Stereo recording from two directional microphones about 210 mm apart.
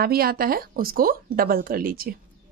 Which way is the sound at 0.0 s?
45° right (ahead or behind).